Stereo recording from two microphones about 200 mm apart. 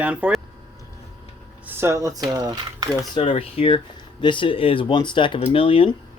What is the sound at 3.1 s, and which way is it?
Speech, 25° left (ahead or behind).